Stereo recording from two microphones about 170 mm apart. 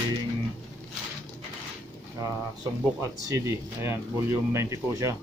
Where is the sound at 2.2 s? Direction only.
15° right (ahead or behind).